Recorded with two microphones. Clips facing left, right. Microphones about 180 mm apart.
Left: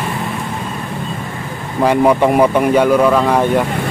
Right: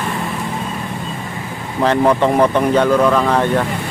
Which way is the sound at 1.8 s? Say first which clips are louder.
Left 2 dB; 10° left (ahead or behind).